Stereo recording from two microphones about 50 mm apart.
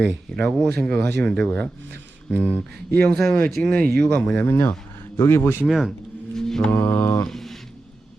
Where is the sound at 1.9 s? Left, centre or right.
Left.